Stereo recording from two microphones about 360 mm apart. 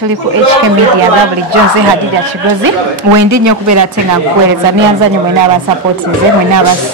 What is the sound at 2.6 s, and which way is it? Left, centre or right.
Speech, right.